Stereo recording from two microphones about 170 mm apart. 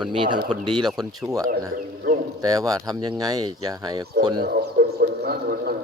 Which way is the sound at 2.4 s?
20° right (ahead or behind).